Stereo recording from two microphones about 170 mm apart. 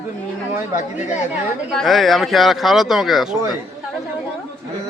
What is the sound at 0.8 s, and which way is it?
Speech, 45° left (ahead or behind).